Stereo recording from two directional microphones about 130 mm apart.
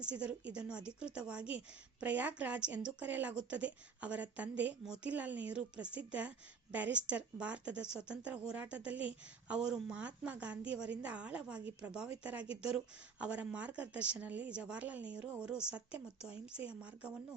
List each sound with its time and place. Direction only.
0.0 s a woman's voice: 10° right (ahead or behind)